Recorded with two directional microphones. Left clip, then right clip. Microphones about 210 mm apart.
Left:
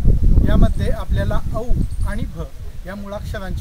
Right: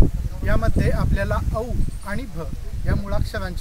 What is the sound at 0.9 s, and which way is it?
Speech, 5° right (ahead or behind).